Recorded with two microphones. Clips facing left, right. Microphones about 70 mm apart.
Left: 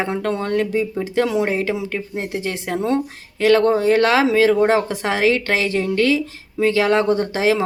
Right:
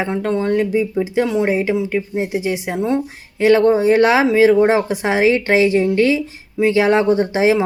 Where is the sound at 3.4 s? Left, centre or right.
Centre.